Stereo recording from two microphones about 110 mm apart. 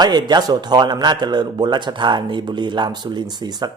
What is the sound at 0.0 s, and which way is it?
A man's voice, 40° right (ahead or behind).